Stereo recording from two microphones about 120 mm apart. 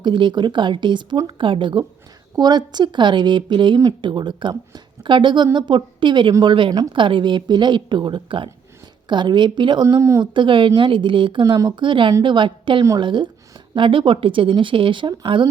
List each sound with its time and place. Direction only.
0.0 s a woman's voice: 40° right (ahead or behind)
10.0 s a woman's voice: 25° right (ahead or behind)
10.3 s a woman's voice: 45° right (ahead or behind)